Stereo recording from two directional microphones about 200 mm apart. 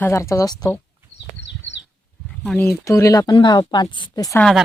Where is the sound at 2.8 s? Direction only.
15° left (ahead or behind).